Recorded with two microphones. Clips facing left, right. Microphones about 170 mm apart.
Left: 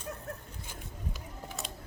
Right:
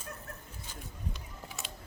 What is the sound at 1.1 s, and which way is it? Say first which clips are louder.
Music: left 3 dB; centre (ahead or behind).